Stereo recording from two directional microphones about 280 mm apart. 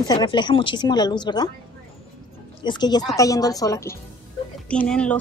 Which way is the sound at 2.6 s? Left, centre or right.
Centre.